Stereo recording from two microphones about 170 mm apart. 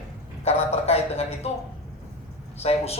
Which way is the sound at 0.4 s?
40° left (ahead or behind).